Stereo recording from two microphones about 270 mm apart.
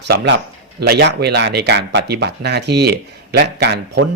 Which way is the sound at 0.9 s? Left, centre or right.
Right.